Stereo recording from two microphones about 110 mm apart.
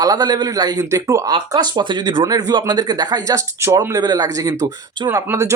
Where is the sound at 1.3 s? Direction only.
40° right (ahead or behind).